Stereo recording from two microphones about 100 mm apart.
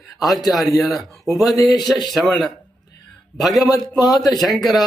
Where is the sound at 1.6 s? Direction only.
40° left (ahead or behind).